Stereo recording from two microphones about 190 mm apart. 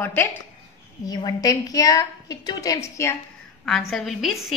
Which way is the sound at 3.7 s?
Centre (ahead or behind).